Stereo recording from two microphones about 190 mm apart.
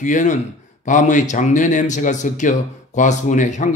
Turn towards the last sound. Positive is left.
turn(degrees=40)  # may be behind; listen again after turning